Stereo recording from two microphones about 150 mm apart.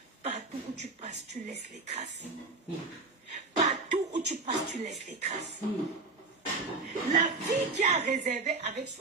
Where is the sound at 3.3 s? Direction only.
50° right (ahead or behind).